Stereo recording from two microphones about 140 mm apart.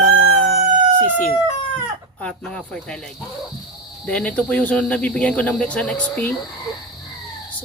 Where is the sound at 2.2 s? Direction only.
5° left (ahead or behind).